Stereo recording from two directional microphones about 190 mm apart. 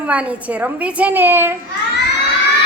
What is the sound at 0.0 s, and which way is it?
A woman's voice, 5° right (ahead or behind).